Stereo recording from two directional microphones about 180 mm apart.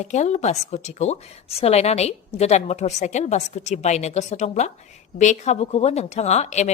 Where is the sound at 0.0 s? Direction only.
40° left (ahead or behind).